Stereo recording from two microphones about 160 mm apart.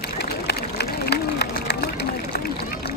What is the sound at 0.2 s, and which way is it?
Vehicle, 90° left.